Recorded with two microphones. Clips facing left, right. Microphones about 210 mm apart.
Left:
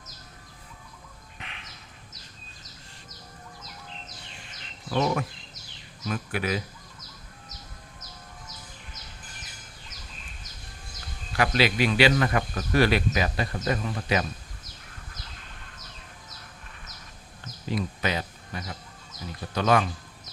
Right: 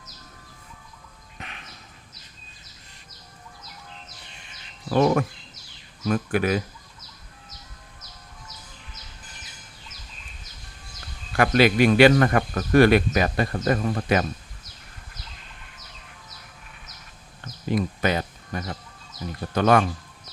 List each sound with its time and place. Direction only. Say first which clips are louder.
1.4 s bird: right 4 dB; 45° right (ahead or behind)
4.9 s speech: right 6 dB; 50° right (ahead or behind)
11.3 s speech: right 6 dB; 50° right (ahead or behind)
17.7 s speech: right 5 dB; 50° right (ahead or behind)